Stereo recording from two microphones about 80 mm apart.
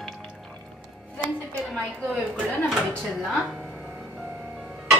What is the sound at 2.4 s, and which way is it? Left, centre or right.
Speech, centre.